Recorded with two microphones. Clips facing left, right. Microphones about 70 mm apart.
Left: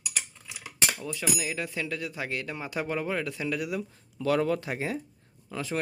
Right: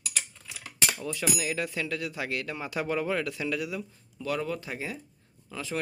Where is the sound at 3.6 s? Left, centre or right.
Left.